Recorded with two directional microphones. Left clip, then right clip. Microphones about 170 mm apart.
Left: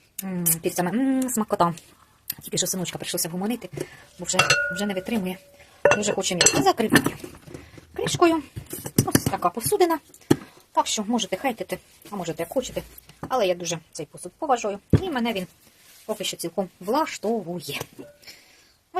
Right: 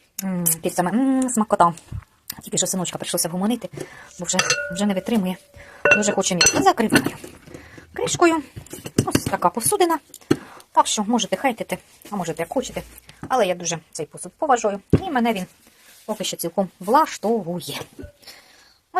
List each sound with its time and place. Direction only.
0.2 s a woman's voice: 20° right (ahead or behind)
0.8 s speech: centre (ahead or behind); by 6.9 s 20° right (ahead or behind)
7.9 s speech: 25° right (ahead or behind)